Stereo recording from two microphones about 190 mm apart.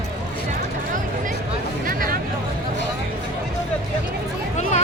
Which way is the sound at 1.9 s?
50° right (ahead or behind).